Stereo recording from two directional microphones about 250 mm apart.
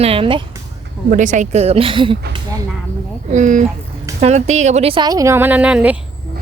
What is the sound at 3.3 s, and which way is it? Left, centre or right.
Speech, right.